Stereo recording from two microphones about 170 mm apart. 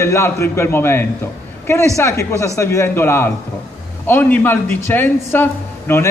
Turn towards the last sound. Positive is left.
turn(degrees=15)  # may be behind; listen again after turning